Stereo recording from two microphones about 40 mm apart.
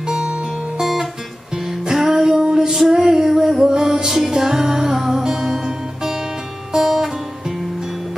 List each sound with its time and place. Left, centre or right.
0.0 s music: centre